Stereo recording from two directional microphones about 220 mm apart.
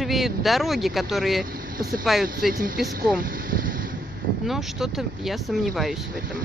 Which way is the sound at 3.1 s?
40° right (ahead or behind).